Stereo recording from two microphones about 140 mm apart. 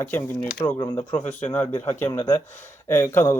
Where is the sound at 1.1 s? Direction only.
60° left (ahead or behind).